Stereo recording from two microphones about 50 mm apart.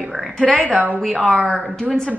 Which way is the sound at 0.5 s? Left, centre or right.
Left.